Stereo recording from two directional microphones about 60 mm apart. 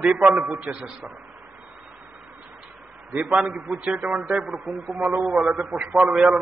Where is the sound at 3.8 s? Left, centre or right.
Right.